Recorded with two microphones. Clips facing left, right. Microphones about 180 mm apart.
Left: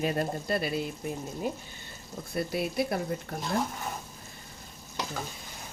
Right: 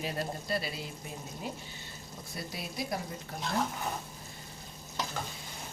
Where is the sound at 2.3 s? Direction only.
60° left (ahead or behind).